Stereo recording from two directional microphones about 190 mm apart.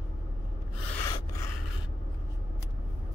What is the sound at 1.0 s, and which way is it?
Filing, 15° left (ahead or behind).